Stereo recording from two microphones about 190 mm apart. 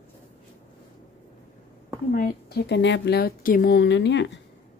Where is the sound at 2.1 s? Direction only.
50° left (ahead or behind); by 4.4 s 70° left (ahead or behind).